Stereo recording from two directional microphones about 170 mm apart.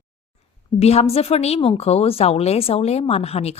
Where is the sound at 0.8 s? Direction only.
35° left (ahead or behind).